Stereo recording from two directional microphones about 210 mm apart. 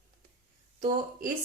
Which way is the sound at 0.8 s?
40° right (ahead or behind).